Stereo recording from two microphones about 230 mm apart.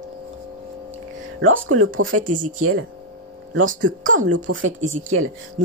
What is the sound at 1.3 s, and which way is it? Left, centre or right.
Speech, right.